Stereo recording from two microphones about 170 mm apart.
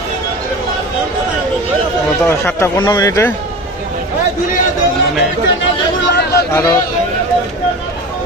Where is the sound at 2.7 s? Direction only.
25° left (ahead or behind).